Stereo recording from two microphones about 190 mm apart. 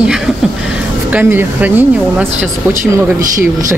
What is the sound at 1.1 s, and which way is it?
Speech, 10° right (ahead or behind).